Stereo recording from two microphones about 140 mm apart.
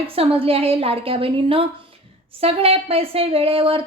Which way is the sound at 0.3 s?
45° right (ahead or behind).